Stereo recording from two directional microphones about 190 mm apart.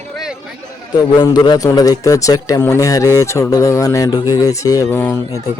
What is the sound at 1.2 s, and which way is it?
A man's voice, 20° left (ahead or behind).